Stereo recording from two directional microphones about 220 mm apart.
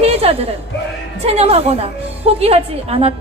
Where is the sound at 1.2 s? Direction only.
30° right (ahead or behind).